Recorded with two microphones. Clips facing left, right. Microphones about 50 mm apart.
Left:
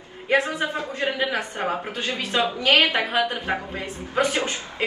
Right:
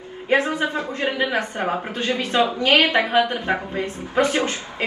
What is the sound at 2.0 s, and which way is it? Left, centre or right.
A woman's voice, right.